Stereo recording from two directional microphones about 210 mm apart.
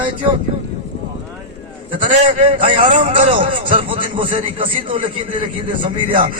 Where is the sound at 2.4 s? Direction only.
25° right (ahead or behind).